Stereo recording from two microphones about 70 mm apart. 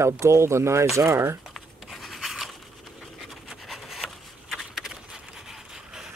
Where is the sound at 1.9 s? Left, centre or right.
Centre.